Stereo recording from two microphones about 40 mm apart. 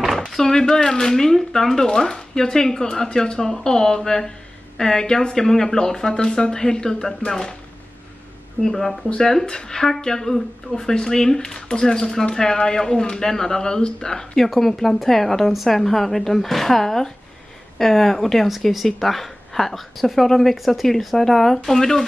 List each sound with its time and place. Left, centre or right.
0.2 s a sound: centre
0.8 s speech: centre
5.3 s speech: centre
8.6 s a woman's voice: centre